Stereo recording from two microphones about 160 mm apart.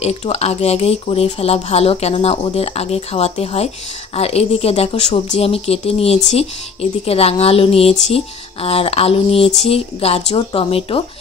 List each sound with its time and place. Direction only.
0.0 s speech: 40° left (ahead or behind)